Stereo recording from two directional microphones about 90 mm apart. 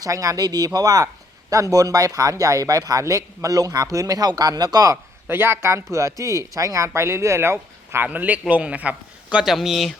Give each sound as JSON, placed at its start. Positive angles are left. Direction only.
{"t": 0.0, "sound": "speech", "side_deg": -40}
{"t": 5.3, "sound": "speech", "side_deg": -25}
{"t": 9.4, "sound": "speech", "side_deg": -5}